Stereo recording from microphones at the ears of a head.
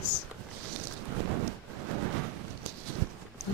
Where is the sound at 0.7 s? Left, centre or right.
Right.